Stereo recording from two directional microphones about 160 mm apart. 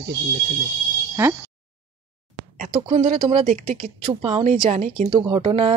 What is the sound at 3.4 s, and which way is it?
Speech, 50° right (ahead or behind).